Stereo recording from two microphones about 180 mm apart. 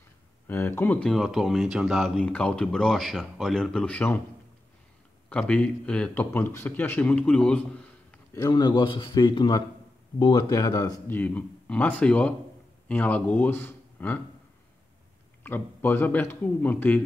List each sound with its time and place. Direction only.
0.5 s speech: 10° left (ahead or behind)
5.3 s speech: 5° left (ahead or behind)
8.4 s a man's voice: 20° left (ahead or behind)
15.4 s speech: 10° left (ahead or behind)